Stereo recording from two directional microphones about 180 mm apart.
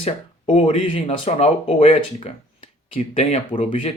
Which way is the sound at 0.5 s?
30° left (ahead or behind).